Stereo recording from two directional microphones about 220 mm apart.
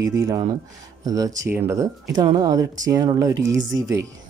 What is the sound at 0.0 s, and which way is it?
Speech, 15° right (ahead or behind).